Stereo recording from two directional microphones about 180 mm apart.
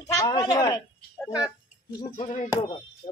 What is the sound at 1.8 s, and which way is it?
Speech, 25° left (ahead or behind).